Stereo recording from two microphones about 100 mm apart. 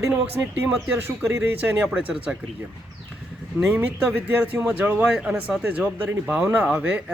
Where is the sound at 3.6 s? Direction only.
10° right (ahead or behind).